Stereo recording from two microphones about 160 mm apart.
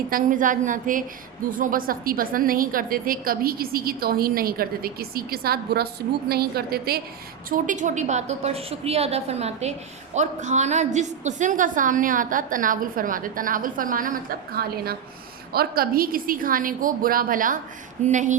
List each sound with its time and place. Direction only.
0.1 s a woman's voice: 55° right (ahead or behind); by 7.0 s 75° right (ahead or behind)
7.5 s a woman's voice: 50° right (ahead or behind)